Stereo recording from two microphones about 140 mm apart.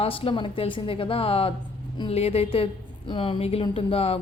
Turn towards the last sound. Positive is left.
turn(degrees=45)  # may be behind; listen again after turning